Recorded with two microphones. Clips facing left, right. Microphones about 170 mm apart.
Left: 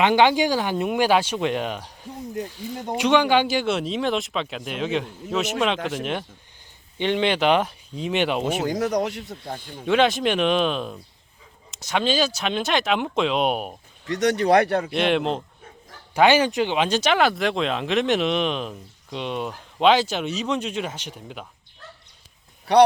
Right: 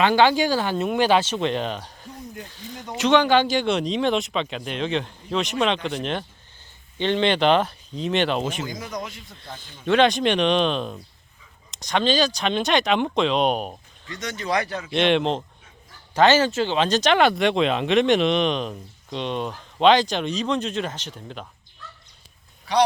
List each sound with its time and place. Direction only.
0.0 s speech: 20° left (ahead or behind)
8.6 s speech: 75° left (ahead or behind)
9.8 s speech: 5° left (ahead or behind)
14.1 s speech: 70° left (ahead or behind)
14.9 s speech: 5° left (ahead or behind)